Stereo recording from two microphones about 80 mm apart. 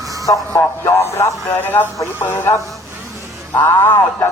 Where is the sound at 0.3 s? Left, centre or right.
Left.